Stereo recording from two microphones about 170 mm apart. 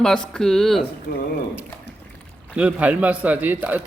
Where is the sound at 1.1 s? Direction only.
65° left (ahead or behind).